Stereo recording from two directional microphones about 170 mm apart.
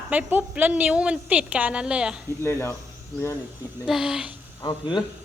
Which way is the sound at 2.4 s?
15° left (ahead or behind).